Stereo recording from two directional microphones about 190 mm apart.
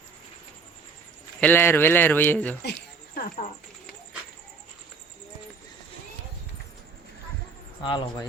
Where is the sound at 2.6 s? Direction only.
55° left (ahead or behind).